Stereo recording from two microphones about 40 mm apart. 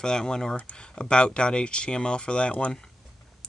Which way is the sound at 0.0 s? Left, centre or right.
Centre.